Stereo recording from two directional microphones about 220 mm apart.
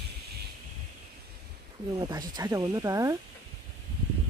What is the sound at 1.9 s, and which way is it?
Speech, 20° right (ahead or behind).